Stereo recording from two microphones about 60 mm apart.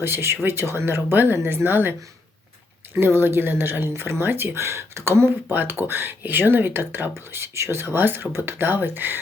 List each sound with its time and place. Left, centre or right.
0.0 s speech: right